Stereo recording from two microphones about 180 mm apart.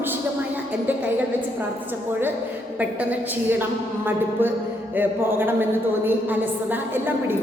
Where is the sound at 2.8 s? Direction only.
10° right (ahead or behind).